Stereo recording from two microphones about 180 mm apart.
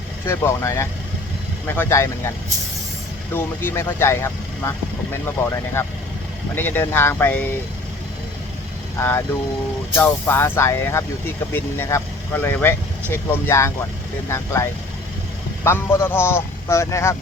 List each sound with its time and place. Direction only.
0.3 s a man's voice: 15° left (ahead or behind)
3.3 s a man's voice: 15° left (ahead or behind)
9.0 s a man's voice: 15° left (ahead or behind)